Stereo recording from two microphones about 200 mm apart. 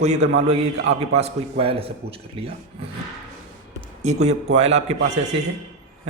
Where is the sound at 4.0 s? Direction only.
35° right (ahead or behind).